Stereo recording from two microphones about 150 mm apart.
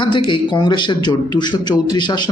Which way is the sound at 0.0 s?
30° left (ahead or behind).